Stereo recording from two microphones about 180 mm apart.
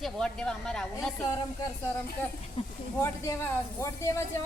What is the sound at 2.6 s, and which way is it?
Speech, 35° left (ahead or behind).